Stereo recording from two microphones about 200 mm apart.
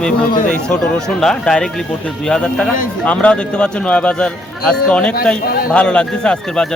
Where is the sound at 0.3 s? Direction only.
40° left (ahead or behind).